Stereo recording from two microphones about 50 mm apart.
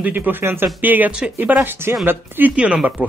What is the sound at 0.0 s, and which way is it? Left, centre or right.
Speech, right.